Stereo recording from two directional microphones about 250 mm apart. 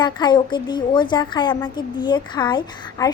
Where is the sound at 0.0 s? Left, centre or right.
Centre.